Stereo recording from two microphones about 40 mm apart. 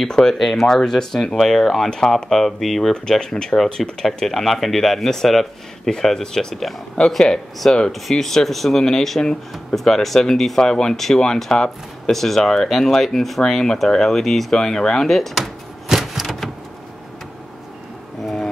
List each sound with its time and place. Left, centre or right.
0.1 s speech: centre
0.4 s speech: centre
2.9 s speech: centre
13.4 s speech: centre
14.6 s speech: centre
15.0 s speech: centre
16.0 s a sound: centre